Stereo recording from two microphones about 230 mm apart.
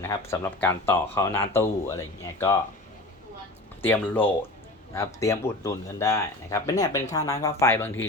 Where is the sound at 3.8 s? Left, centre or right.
Centre.